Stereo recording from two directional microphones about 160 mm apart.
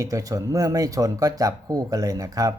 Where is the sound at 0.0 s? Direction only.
20° right (ahead or behind).